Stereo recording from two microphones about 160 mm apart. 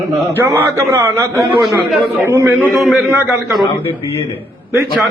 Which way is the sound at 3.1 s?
15° right (ahead or behind).